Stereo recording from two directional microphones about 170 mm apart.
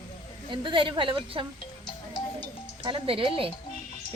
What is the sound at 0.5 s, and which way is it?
Speech, 30° right (ahead or behind).